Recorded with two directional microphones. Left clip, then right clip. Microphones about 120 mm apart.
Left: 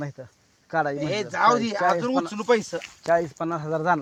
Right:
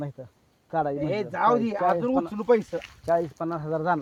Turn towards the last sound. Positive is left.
turn(degrees=45)  # may be behind; listen again after turning